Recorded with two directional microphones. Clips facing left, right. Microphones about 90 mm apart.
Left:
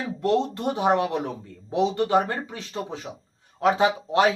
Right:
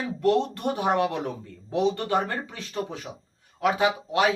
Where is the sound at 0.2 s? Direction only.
20° left (ahead or behind).